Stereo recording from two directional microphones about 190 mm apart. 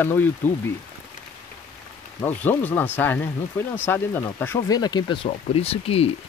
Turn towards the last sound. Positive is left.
turn(degrees=30)  # may be behind; listen again after turning